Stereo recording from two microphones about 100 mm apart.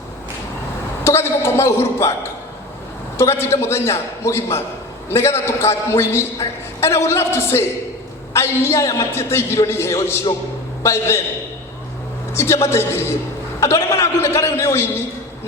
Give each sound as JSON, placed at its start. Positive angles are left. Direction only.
{"t": 1.0, "sound": "a woman's voice", "side_deg": 25}
{"t": 3.2, "sound": "a man's voice", "side_deg": 25}
{"t": 12.3, "sound": "a man's voice", "side_deg": 25}